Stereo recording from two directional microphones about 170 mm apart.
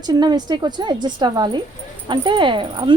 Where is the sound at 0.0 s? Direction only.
25° right (ahead or behind).